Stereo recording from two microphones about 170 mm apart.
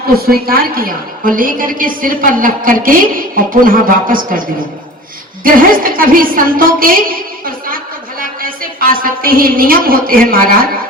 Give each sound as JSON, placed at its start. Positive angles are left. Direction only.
{"t": 0.2, "sound": "a woman's voice", "side_deg": -60}